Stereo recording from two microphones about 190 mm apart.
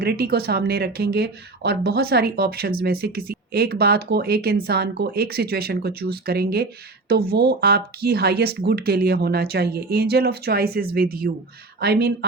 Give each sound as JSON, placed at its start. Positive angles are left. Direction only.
{"t": 0.0, "sound": "speech", "side_deg": -55}